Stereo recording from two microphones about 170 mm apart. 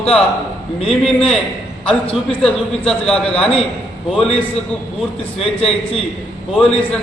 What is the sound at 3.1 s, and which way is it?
Speech, 35° left (ahead or behind).